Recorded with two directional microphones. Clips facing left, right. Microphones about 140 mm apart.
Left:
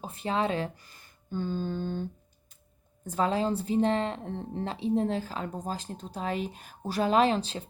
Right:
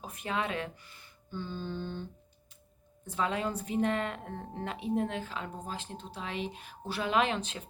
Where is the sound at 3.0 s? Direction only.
40° left (ahead or behind).